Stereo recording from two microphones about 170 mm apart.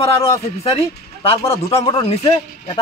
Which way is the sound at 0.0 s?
35° left (ahead or behind).